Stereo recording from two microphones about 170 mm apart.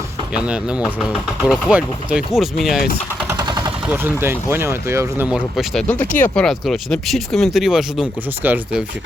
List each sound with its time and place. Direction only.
0.3 s speech: 5° right (ahead or behind)
3.2 s a sound: 25° right (ahead or behind)
3.8 s speech: 15° right (ahead or behind)
5.9 s speech: 10° left (ahead or behind); by 8.8 s 10° right (ahead or behind)